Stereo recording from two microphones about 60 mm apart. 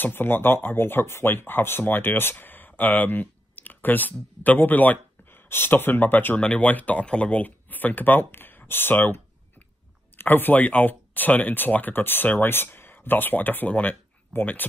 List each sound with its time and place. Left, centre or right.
0.0 s speech: left
6.4 s speech: left